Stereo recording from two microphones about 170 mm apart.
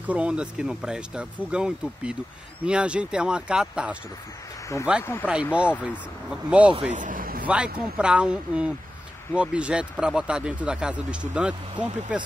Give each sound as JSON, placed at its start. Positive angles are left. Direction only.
{"t": 0.0, "sound": "speech", "side_deg": -5}
{"t": 6.9, "sound": "a sound", "side_deg": -50}
{"t": 7.4, "sound": "speech", "side_deg": -5}